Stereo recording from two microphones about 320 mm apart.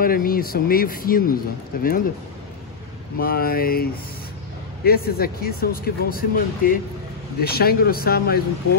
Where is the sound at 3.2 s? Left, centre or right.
Left.